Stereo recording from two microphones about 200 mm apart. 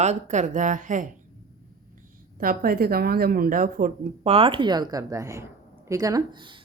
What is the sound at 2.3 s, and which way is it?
A woman's voice, 45° right (ahead or behind).